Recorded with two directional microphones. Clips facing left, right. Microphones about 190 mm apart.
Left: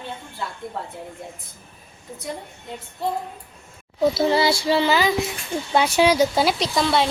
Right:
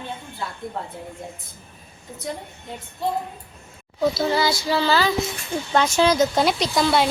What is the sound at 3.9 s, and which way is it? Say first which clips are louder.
A child's voice: left 2 dB; 25° left (ahead or behind).